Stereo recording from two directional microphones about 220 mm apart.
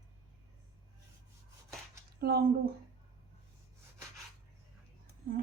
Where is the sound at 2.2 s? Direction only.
45° right (ahead or behind).